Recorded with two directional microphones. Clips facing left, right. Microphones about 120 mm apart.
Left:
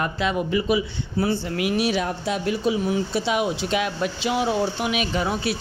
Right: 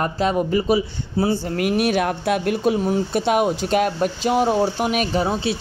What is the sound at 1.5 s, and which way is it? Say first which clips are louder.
Speech: right 4 dB; 50° right (ahead or behind).